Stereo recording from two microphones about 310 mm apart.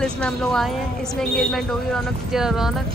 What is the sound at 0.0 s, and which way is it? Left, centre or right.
A woman's voice, centre.